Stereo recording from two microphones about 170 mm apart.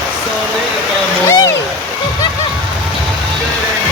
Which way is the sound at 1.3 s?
15° left (ahead or behind).